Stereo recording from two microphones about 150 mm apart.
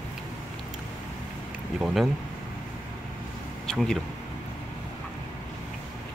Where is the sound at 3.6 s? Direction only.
5° left (ahead or behind).